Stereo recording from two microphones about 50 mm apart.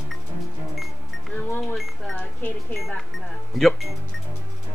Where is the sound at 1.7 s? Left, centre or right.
Centre.